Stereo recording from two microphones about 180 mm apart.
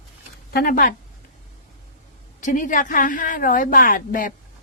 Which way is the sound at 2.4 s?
50° left (ahead or behind).